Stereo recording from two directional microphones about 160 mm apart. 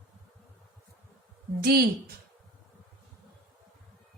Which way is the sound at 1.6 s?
75° right (ahead or behind).